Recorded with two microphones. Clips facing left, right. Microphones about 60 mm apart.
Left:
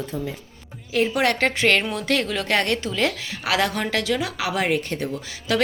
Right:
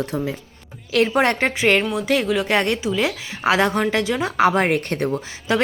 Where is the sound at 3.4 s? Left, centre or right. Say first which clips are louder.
Right 5 dB; right.